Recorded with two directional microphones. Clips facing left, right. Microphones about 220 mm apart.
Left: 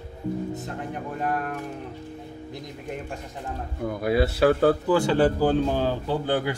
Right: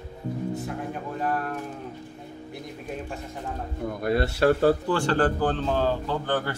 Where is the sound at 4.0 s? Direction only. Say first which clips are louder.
Left 2 dB; centre (ahead or behind).